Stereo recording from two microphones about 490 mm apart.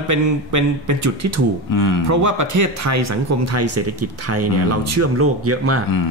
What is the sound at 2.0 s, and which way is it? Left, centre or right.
Speech, right.